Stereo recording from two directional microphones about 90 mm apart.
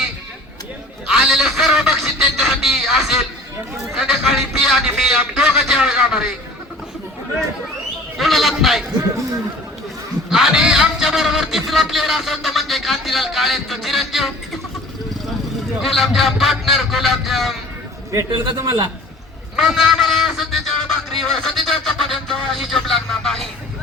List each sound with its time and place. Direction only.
1.0 s a sound: 5° right (ahead or behind)
8.2 s a sound: centre (ahead or behind)
10.2 s a man's voice: 5° right (ahead or behind)
15.8 s a man's voice: centre (ahead or behind)
18.5 s a man's voice: 40° right (ahead or behind)
19.5 s a man's voice: 5° right (ahead or behind)